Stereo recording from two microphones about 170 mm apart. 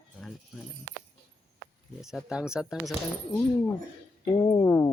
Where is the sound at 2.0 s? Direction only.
Centre (ahead or behind).